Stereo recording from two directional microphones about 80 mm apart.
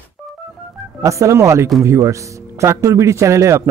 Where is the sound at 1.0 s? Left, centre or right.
Right.